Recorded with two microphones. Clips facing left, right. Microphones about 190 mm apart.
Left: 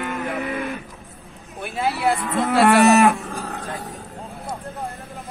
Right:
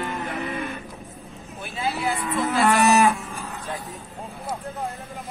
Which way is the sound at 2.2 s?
65° left (ahead or behind).